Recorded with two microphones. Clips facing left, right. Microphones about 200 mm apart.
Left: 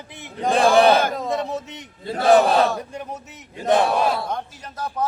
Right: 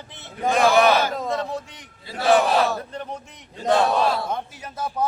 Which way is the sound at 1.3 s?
20° left (ahead or behind).